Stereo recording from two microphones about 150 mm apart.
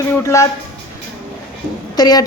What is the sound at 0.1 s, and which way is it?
Speech, 20° left (ahead or behind).